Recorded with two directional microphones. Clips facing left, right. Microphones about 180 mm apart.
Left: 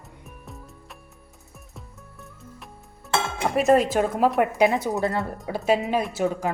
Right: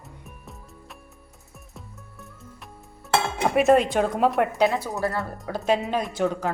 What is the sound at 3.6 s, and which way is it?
Speech, centre (ahead or behind).